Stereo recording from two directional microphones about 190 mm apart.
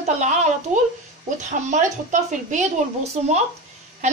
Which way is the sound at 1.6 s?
40° right (ahead or behind).